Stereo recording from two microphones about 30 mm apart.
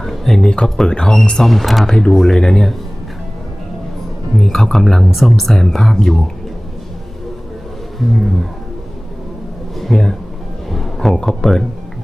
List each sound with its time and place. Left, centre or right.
0.0 s a sound: centre
0.4 s speech: centre
0.9 s speech: left
1.4 s speech: centre
1.9 s speech: left
4.4 s speech: centre
7.9 s speech: centre
9.7 s speech: centre
10.7 s a sound: centre
11.3 s speech: centre